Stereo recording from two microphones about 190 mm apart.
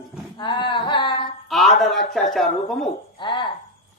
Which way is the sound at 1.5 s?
Centre (ahead or behind).